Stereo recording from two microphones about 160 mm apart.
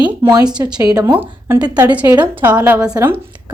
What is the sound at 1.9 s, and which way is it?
A woman's voice, 10° right (ahead or behind).